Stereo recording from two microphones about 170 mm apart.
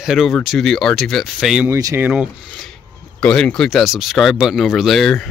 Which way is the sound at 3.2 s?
5° left (ahead or behind).